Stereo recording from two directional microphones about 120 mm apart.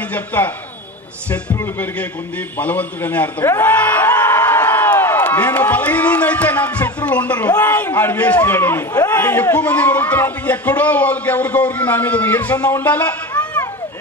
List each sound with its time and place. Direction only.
0.1 s a man's voice: 15° left (ahead or behind)
1.6 s a man's voice: 15° left (ahead or behind)